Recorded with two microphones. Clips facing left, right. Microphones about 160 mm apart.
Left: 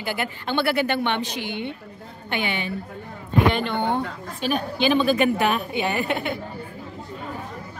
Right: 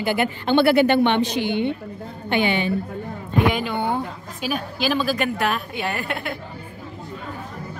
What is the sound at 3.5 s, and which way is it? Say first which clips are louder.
Speech: even; 5° right (ahead or behind).